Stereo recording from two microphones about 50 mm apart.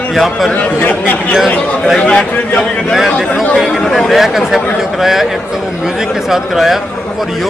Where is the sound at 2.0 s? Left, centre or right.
Centre.